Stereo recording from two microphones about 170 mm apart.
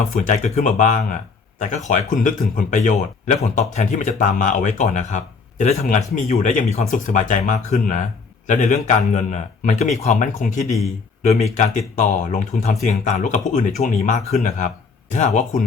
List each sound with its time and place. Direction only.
0.1 s speech: 45° left (ahead or behind)